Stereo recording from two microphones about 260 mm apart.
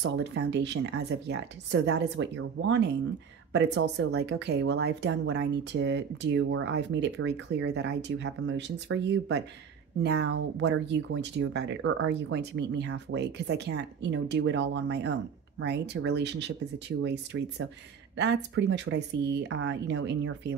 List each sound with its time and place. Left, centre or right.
0.0 s speech: right